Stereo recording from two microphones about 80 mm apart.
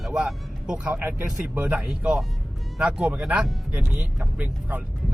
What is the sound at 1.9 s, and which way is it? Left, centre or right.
Speech, centre.